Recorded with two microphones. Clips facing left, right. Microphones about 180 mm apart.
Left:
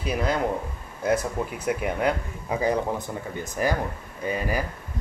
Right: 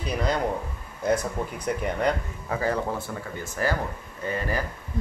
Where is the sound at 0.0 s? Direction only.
5° left (ahead or behind).